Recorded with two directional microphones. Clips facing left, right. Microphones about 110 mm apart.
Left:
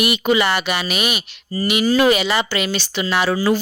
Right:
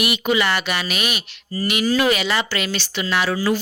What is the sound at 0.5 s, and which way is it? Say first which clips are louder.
Speech: left 2 dB; 10° left (ahead or behind).